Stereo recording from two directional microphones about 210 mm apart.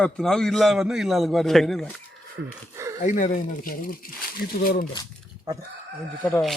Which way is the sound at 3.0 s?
40° left (ahead or behind).